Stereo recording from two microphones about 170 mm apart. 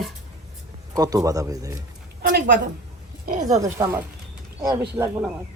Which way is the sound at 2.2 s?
60° right (ahead or behind).